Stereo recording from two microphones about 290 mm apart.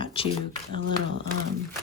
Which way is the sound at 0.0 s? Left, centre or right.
Centre.